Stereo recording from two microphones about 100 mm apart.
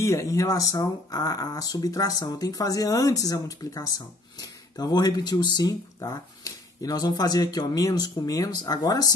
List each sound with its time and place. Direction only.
0.0 s speech: 30° left (ahead or behind)